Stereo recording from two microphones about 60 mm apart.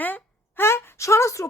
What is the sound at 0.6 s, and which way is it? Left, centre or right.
Speech, left.